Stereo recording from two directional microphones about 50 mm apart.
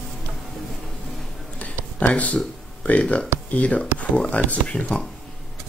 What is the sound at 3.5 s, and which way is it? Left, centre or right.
Speech, left.